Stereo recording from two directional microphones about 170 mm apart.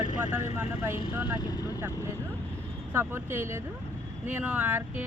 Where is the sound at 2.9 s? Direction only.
15° right (ahead or behind).